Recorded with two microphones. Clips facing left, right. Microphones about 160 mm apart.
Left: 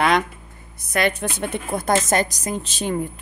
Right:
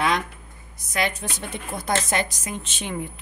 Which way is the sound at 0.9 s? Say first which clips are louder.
Left 5 dB; 60° left (ahead or behind).